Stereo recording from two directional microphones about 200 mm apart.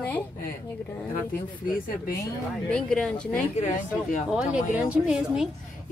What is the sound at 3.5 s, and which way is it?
Speech, 35° left (ahead or behind).